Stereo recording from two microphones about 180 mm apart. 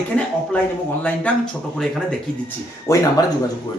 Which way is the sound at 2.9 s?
15° left (ahead or behind).